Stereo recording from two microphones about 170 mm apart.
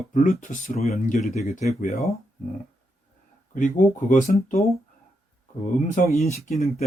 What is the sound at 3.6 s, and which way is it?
Speech, 50° left (ahead or behind).